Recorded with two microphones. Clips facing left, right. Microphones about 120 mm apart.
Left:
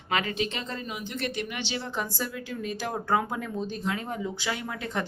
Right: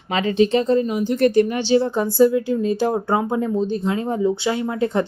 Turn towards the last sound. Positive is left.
turn(degrees=-30)  # may be behind; listen again after turning